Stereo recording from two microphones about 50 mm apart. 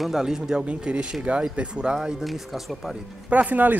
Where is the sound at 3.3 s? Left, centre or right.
Right.